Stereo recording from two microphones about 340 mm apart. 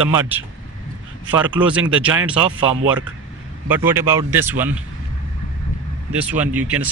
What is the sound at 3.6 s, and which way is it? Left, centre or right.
Speech, centre.